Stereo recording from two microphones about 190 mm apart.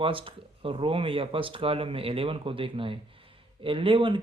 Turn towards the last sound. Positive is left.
turn(degrees=-25)  # may be behind; listen again after turning